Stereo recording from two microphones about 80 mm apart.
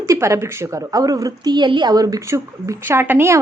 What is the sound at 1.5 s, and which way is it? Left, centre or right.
A woman's voice, right.